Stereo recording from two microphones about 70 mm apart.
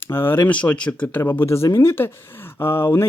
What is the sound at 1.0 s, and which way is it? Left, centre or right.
Speech, left.